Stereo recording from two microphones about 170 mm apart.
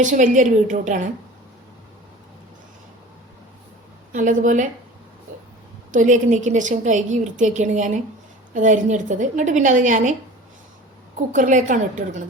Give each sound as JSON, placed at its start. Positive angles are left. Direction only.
{"t": 0.0, "sound": "a woman's voice", "side_deg": -50}
{"t": 4.1, "sound": "a woman's voice", "side_deg": -50}
{"t": 5.9, "sound": "a woman's voice", "side_deg": -50}
{"t": 11.3, "sound": "a woman's voice", "side_deg": -50}